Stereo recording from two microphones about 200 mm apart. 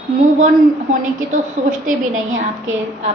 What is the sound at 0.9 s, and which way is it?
Speech, 40° right (ahead or behind).